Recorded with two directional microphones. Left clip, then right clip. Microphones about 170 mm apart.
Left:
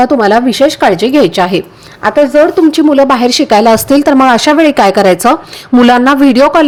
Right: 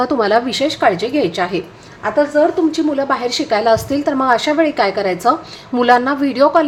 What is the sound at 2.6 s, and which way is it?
A woman's voice, 60° left (ahead or behind).